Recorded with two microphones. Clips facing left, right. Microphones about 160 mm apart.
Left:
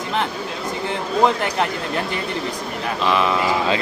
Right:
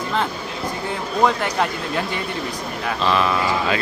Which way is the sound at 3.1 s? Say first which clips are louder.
Left 1 dB; 15° left (ahead or behind).